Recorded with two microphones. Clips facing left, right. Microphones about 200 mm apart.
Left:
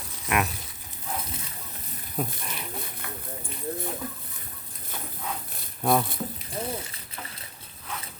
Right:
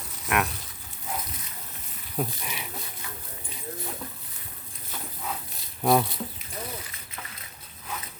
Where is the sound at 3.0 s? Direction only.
60° left (ahead or behind).